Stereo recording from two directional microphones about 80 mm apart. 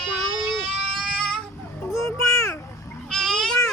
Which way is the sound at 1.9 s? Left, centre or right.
Left.